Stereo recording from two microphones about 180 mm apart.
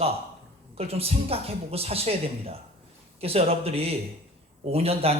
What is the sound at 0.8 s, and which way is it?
Speech, 35° right (ahead or behind).